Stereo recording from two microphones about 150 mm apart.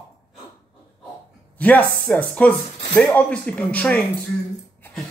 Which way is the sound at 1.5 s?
10° left (ahead or behind).